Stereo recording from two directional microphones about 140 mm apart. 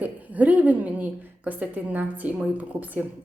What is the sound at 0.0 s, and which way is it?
Speech, 10° right (ahead or behind).